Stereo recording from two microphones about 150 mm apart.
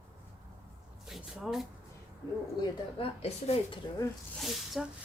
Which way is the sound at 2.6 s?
40° left (ahead or behind).